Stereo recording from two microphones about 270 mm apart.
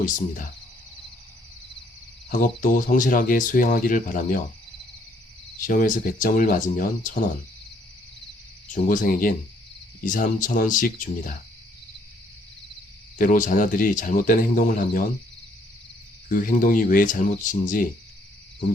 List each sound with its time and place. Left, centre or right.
2.3 s speech: left
5.6 s speech: left
8.7 s speech: left
13.1 s speech: left
16.3 s speech: left